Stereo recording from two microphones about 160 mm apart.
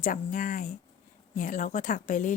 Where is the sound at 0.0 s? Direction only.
50° left (ahead or behind).